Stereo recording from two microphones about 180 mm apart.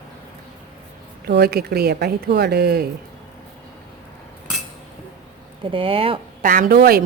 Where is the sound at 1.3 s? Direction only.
60° right (ahead or behind).